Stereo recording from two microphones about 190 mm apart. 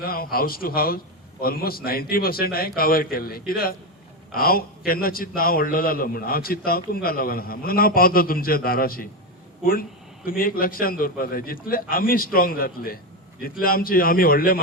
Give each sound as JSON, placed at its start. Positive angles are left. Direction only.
{"t": 0.0, "sound": "a man's voice", "side_deg": 50}
{"t": 10.2, "sound": "a man's voice", "side_deg": 50}